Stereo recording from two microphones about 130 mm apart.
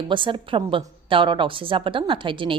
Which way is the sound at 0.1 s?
40° right (ahead or behind).